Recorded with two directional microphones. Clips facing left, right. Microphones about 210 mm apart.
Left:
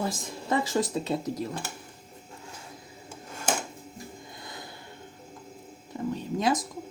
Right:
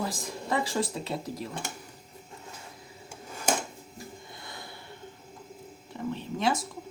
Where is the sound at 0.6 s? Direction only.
20° left (ahead or behind).